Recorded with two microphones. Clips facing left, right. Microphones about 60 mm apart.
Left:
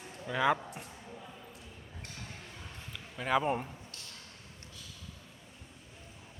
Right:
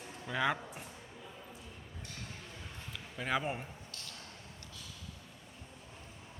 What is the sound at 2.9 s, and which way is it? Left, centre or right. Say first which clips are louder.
Speech: left 5 dB; centre.